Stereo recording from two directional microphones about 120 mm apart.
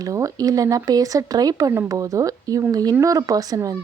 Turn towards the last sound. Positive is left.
turn(degrees=-30)  # may be behind; listen again after turning